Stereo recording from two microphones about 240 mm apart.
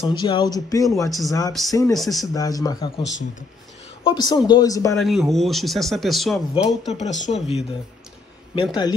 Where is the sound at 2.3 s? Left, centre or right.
Centre.